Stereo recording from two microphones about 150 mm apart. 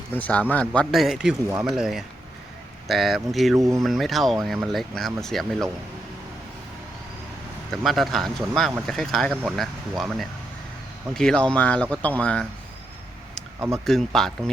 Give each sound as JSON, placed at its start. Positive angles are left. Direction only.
{"t": 0.2, "sound": "speech", "side_deg": 10}
{"t": 7.7, "sound": "speech", "side_deg": 0}
{"t": 13.6, "sound": "speech", "side_deg": -15}
{"t": 13.8, "sound": "speech", "side_deg": 5}